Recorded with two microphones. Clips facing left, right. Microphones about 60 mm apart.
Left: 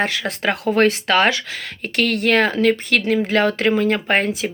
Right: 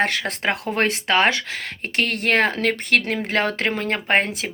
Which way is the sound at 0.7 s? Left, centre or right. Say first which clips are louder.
Left 4 dB; right.